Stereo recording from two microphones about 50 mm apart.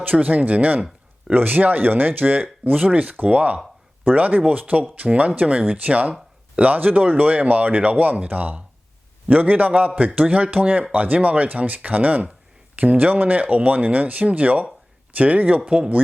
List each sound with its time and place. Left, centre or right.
0.0 s speech: right